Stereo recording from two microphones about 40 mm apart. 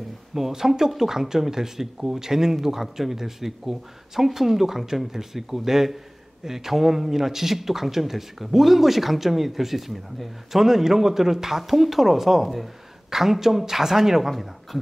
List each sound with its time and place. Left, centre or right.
0.3 s a man's voice: centre